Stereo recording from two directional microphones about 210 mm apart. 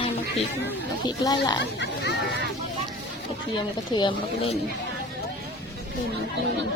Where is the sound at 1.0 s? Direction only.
20° left (ahead or behind).